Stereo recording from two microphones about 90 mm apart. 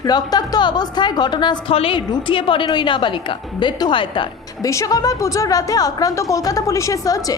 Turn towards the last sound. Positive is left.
turn(degrees=40)  # may be behind; listen again after turning